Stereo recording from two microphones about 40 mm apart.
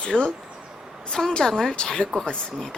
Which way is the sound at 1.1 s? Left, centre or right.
Centre.